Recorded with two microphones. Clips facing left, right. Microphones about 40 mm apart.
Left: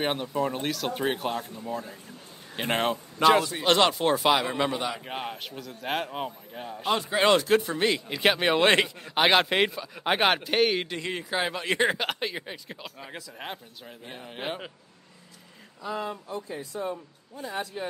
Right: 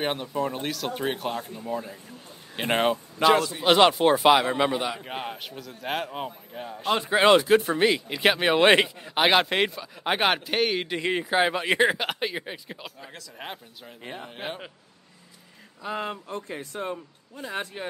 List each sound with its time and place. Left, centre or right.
0.0 s a man's voice: centre
2.5 s speech: centre
3.3 s a man's voice: centre
3.6 s a man's voice: centre
7.2 s a man's voice: centre
10.9 s speech: centre
11.9 s a man's voice: centre
15.8 s speech: right